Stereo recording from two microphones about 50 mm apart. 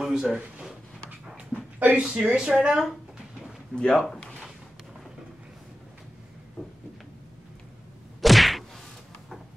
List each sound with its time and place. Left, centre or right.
0.0 s a sound: centre
1.3 s dog: right
2.0 s speech: centre
3.7 s speech: centre
8.2 s whack: centre